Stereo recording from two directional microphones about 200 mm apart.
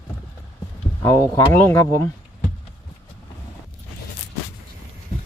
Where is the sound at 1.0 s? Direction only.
15° left (ahead or behind).